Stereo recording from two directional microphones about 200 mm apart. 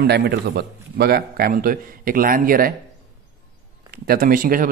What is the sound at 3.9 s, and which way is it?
Speech, 45° right (ahead or behind).